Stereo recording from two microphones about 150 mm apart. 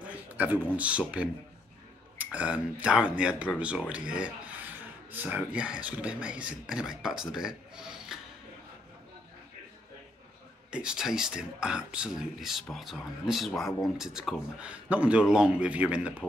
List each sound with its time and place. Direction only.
0.0 s speech: 10° right (ahead or behind)
10.7 s speech: 5° right (ahead or behind)